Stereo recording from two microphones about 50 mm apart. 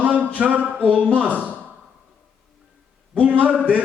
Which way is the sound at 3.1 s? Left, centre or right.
Right.